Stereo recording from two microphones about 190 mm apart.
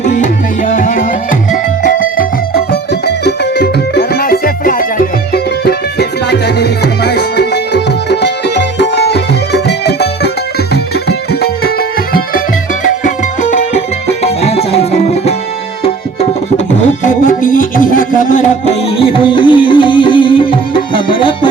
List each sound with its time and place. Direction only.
0.2 s music: 45° left (ahead or behind)
12.8 s music: 40° left (ahead or behind)
17.0 s music: 45° left (ahead or behind); by 21.5 s 25° left (ahead or behind)